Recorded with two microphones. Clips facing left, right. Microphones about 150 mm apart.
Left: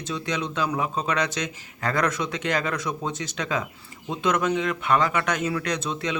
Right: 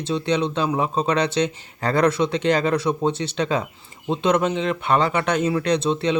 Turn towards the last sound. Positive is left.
turn(degrees=-30)  # may be behind; listen again after turning